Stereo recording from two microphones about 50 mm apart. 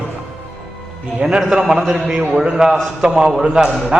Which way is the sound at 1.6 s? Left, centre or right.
Centre.